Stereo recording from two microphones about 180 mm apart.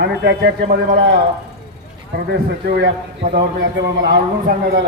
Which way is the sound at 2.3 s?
65° right (ahead or behind).